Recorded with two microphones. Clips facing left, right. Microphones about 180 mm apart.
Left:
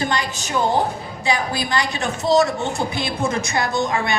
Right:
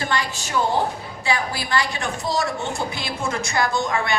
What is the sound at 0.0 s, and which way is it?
A woman's voice, 20° left (ahead or behind).